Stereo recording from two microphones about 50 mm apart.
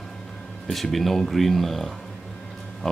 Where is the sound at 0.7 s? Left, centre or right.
Centre.